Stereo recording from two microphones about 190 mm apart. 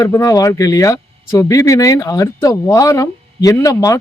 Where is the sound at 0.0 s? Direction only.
15° left (ahead or behind).